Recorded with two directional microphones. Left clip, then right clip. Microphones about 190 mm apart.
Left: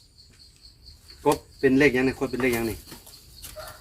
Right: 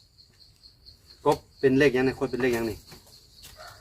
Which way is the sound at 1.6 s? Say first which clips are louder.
Left 1 dB; 25° right (ahead or behind).